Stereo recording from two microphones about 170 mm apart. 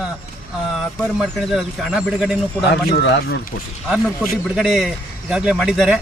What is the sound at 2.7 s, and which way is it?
Speech, 90° left.